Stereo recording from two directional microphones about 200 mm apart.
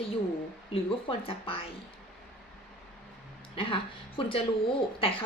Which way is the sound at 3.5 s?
25° left (ahead or behind).